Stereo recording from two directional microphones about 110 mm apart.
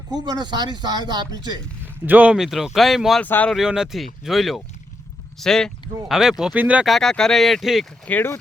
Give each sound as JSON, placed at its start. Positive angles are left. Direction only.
{"t": 0.1, "sound": "speech", "side_deg": -40}
{"t": 2.0, "sound": "speech", "side_deg": -15}
{"t": 3.2, "sound": "speech", "side_deg": 15}
{"t": 3.5, "sound": "speech", "side_deg": -5}
{"t": 6.8, "sound": "speech", "side_deg": 0}
{"t": 8.0, "sound": "speech", "side_deg": 20}